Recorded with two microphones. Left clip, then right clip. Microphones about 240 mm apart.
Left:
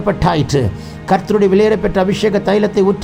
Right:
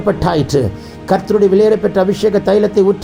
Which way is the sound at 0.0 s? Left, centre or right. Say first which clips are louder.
Right 1 dB; left.